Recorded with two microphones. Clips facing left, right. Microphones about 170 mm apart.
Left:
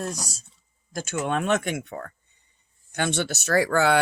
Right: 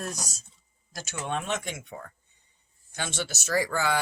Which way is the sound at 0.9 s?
55° left (ahead or behind).